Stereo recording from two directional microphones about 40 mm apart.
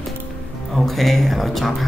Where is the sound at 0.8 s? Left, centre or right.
Centre.